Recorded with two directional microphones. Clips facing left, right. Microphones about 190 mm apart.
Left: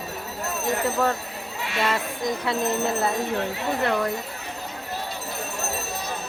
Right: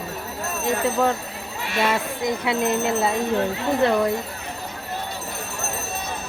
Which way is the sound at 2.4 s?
20° right (ahead or behind).